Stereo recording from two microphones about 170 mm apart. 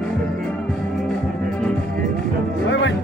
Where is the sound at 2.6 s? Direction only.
90° left.